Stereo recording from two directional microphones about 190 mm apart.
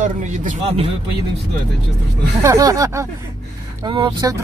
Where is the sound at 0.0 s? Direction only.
40° right (ahead or behind).